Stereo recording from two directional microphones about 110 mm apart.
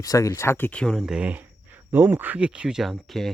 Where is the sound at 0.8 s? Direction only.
5° left (ahead or behind).